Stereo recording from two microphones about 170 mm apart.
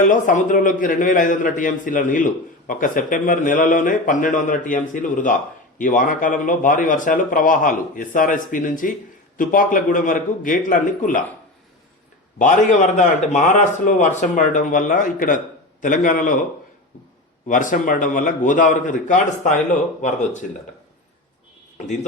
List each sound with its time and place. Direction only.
0.0 s a man's voice: 50° left (ahead or behind)
12.4 s a man's voice: 45° left (ahead or behind)
17.5 s a man's voice: 50° left (ahead or behind)